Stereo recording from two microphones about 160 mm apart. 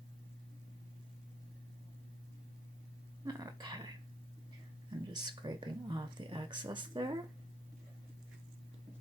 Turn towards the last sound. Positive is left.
turn(degrees=-30)  # may be behind; listen again after turning